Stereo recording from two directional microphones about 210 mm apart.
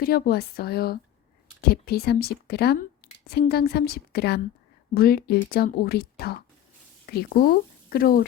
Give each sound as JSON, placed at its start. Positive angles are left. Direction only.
{"t": 0.0, "sound": "a woman's voice", "side_deg": 45}